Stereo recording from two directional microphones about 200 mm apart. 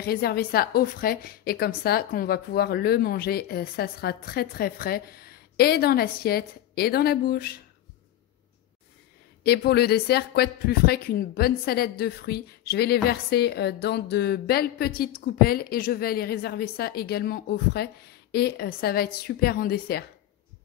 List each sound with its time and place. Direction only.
0.0 s speech: 50° left (ahead or behind)
9.4 s speech: 55° left (ahead or behind)